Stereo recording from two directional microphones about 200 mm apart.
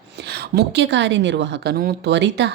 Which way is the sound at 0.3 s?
55° right (ahead or behind).